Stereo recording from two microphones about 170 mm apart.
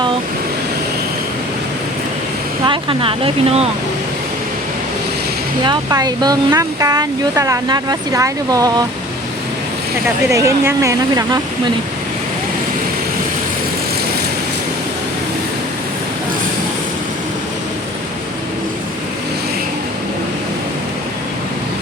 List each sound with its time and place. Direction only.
2.6 s speech: 30° right (ahead or behind)
5.6 s speech: 25° right (ahead or behind)
10.3 s speech: 20° right (ahead or behind)